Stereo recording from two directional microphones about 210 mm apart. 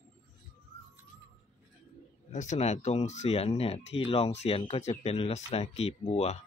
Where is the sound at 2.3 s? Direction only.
35° left (ahead or behind).